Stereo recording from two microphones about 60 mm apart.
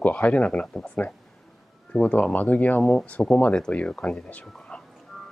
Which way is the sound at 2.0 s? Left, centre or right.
Left.